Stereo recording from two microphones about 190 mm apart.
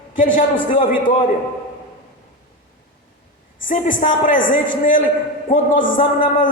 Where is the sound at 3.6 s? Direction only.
45° left (ahead or behind).